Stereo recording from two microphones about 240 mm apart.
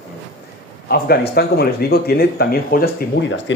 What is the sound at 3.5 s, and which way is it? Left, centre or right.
Speech, left.